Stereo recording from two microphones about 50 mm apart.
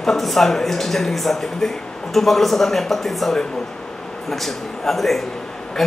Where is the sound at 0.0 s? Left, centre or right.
Centre.